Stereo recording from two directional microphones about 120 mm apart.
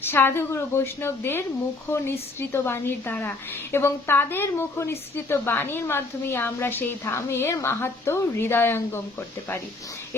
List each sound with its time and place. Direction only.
0.0 s a woman's voice: 20° left (ahead or behind)